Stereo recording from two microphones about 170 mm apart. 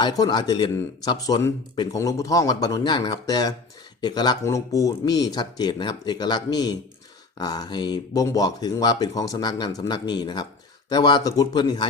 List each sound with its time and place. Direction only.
0.0 s speech: 25° left (ahead or behind)